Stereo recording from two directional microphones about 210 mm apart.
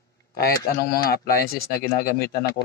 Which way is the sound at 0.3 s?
45° left (ahead or behind).